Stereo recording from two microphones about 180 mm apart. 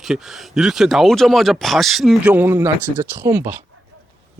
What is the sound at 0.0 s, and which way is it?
Speech, centre (ahead or behind).